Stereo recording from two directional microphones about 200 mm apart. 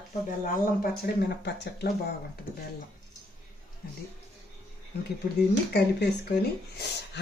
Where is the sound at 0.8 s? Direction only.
55° left (ahead or behind).